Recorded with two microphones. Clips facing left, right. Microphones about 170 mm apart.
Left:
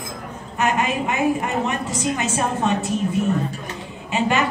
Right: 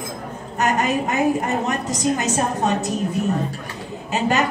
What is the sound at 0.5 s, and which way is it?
A woman's voice, 40° right (ahead or behind).